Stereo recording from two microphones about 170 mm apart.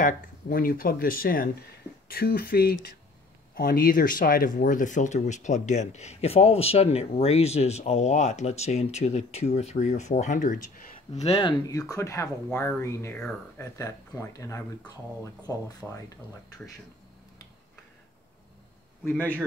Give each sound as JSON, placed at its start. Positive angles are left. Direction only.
{"t": 0.0, "sound": "speech", "side_deg": 55}
{"t": 11.2, "sound": "speech", "side_deg": 35}
{"t": 11.6, "sound": "speech", "side_deg": 20}
{"t": 15.8, "sound": "speech", "side_deg": 5}
{"t": 19.0, "sound": "speech", "side_deg": 10}